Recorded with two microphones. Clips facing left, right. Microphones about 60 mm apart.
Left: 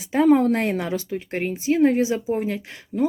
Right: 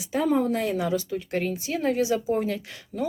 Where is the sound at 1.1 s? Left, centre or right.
Left.